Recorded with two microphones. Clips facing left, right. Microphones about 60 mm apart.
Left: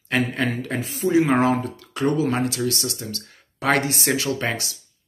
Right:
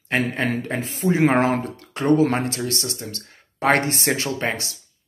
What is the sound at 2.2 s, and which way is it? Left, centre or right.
Speech, right.